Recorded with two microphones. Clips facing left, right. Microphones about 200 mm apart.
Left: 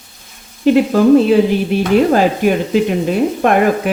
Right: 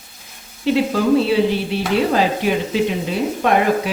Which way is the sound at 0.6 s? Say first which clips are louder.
Left 6 dB; 50° left (ahead or behind).